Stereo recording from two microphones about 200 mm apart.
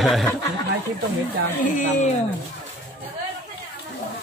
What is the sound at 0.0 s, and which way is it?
Speech, centre (ahead or behind).